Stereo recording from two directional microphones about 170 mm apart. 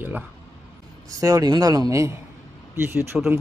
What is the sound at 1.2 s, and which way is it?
A man's voice, 20° right (ahead or behind).